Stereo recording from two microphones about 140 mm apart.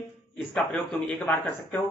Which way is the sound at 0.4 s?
5° left (ahead or behind).